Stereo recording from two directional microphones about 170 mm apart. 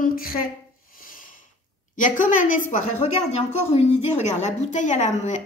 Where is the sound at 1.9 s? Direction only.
50° left (ahead or behind).